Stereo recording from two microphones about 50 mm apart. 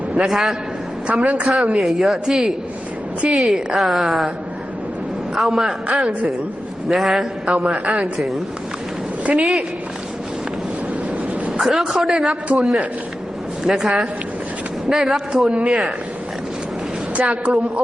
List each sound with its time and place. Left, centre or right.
0.1 s a man's voice: centre
1.2 s a man's voice: right
1.5 s a woman's voice: centre
5.4 s a woman's voice: centre
9.4 s a woman's voice: centre
11.9 s a woman's voice: centre
15.4 s a man's voice: right
17.4 s a man's voice: right